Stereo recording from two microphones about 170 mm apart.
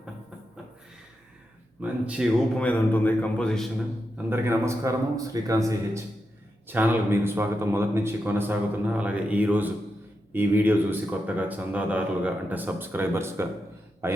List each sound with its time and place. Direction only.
1.8 s speech: 5° right (ahead or behind)
2.6 s a man's voice: 10° left (ahead or behind)
4.3 s a man's voice: 15° right (ahead or behind)